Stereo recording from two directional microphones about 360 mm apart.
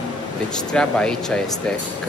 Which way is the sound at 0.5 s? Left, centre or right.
Centre.